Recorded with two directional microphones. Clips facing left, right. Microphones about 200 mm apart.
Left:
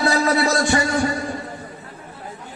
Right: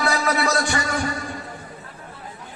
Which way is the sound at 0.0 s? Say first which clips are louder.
Left 4 dB; 35° left (ahead or behind).